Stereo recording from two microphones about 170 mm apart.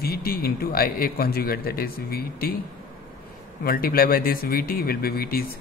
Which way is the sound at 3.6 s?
60° left (ahead or behind).